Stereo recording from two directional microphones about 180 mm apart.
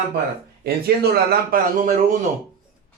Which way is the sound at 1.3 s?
55° right (ahead or behind).